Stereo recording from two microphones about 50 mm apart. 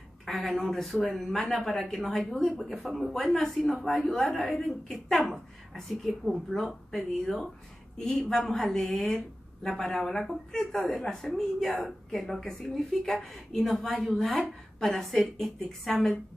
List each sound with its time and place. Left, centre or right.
0.2 s a woman's voice: centre
4.1 s a woman's voice: centre
4.4 s a woman's voice: centre